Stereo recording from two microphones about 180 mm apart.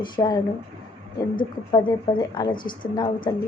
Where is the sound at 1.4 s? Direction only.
25° left (ahead or behind).